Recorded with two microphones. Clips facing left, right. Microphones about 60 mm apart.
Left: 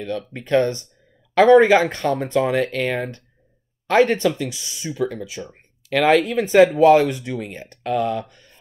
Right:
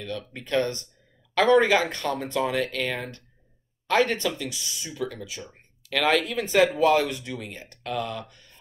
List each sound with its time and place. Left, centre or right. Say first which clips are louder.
0.0 s speech: left 7 dB; left